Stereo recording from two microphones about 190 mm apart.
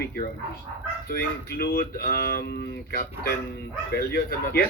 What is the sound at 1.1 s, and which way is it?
Speech, 55° left (ahead or behind).